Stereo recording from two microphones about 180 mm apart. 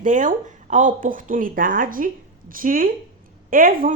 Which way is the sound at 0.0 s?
45° right (ahead or behind).